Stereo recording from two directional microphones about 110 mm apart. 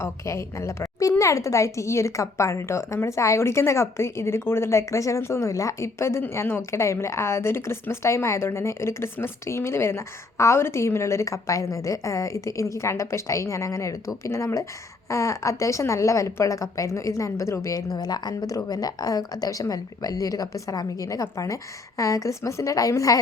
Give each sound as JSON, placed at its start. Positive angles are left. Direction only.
{"t": 0.0, "sound": "a woman's voice", "side_deg": 25}